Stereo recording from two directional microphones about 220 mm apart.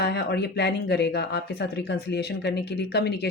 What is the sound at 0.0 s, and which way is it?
Speech, 50° left (ahead or behind).